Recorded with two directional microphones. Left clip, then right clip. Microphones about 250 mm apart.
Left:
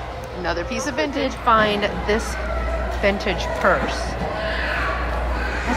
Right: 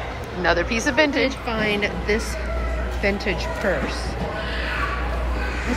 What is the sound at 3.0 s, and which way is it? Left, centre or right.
Speech, centre.